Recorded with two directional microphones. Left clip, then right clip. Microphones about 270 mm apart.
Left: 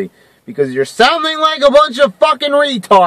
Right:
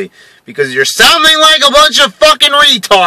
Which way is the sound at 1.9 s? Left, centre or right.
Centre.